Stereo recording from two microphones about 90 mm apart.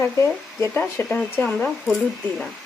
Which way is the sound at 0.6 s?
25° left (ahead or behind).